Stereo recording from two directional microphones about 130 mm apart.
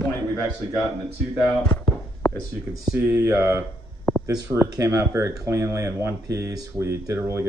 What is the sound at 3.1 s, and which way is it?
Speech, 25° right (ahead or behind).